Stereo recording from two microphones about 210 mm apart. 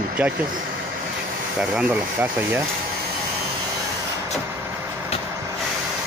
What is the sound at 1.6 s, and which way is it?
Speech, 5° right (ahead or behind).